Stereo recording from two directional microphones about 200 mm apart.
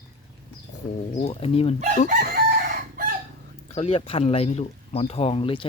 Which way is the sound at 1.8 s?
40° right (ahead or behind).